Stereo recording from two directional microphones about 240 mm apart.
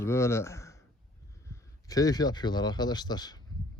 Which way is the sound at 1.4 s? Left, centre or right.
Centre.